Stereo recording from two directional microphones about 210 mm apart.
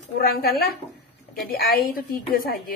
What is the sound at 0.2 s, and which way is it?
A woman's voice, 45° left (ahead or behind).